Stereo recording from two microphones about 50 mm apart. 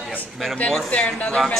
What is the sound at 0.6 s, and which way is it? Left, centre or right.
Speech, centre.